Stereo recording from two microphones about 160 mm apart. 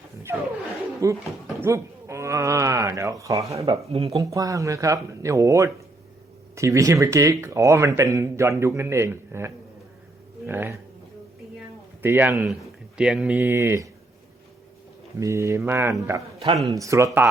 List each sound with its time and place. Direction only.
0.3 s speech: 15° right (ahead or behind)
3.7 s speech: 40° right (ahead or behind)
4.1 s speech: 20° right (ahead or behind)
12.0 s speech: 15° right (ahead or behind)
15.2 s speech: 20° right (ahead or behind)